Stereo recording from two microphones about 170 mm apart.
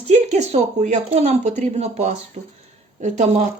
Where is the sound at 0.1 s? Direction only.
40° right (ahead or behind).